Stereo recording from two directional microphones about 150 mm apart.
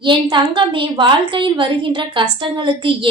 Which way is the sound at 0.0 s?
30° right (ahead or behind).